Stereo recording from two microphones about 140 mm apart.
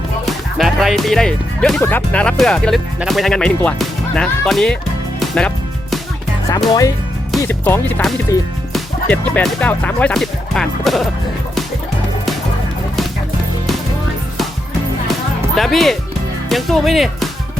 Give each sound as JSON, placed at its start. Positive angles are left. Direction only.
{"t": 0.3, "sound": "speech", "side_deg": 0}
{"t": 1.8, "sound": "speech", "side_deg": 15}
{"t": 6.7, "sound": "speech", "side_deg": 25}
{"t": 7.4, "sound": "speech", "side_deg": 15}
{"t": 15.5, "sound": "speech", "side_deg": 0}